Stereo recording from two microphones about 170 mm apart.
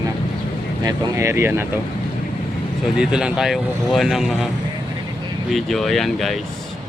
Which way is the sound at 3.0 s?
5° right (ahead or behind).